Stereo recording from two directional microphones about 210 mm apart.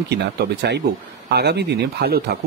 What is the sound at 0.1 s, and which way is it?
Speech, 50° right (ahead or behind).